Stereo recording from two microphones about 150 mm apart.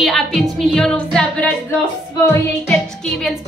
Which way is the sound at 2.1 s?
20° left (ahead or behind).